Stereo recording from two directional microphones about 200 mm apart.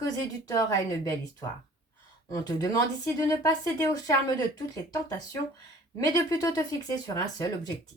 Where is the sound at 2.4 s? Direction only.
20° left (ahead or behind).